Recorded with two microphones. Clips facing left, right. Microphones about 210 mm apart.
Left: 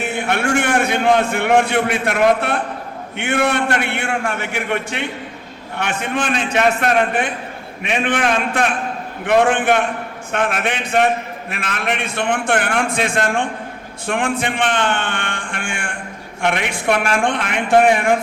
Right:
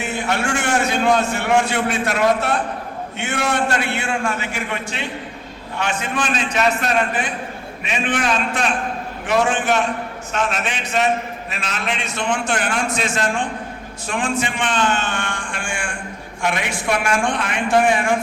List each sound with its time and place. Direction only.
0.0 s a man's voice: 55° left (ahead or behind)